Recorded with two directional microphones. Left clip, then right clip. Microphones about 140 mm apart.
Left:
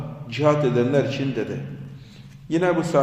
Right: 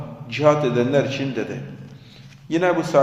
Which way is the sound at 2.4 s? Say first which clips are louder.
Right 2 dB; 15° left (ahead or behind).